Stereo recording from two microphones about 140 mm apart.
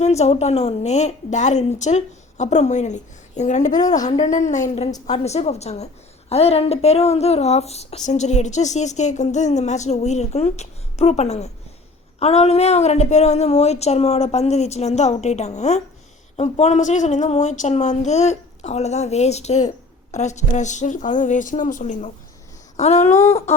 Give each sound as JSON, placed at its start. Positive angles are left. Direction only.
{"t": 0.0, "sound": "speech", "side_deg": 50}
{"t": 4.9, "sound": "a woman's voice", "side_deg": 25}
{"t": 5.1, "sound": "a woman's voice", "side_deg": 50}